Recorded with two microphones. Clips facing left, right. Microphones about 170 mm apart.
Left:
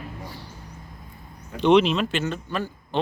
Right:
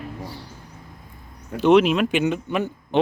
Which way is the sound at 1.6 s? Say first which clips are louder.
Right 2 dB; 5° right (ahead or behind).